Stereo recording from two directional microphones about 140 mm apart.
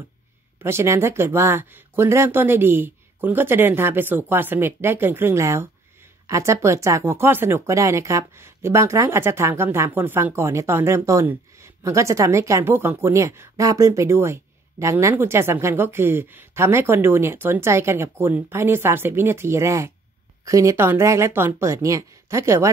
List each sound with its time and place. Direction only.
0.6 s speech: 20° right (ahead or behind)